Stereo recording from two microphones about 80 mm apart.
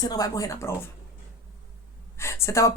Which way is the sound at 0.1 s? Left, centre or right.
Left.